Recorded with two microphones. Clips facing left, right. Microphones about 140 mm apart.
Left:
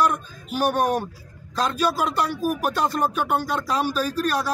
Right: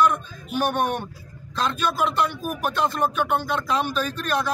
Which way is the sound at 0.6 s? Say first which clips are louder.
Left 2 dB; 35° left (ahead or behind).